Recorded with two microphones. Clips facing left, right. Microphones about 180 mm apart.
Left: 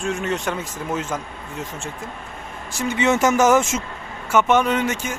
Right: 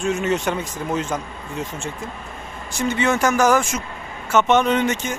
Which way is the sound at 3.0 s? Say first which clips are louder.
Left 2 dB; 20° left (ahead or behind).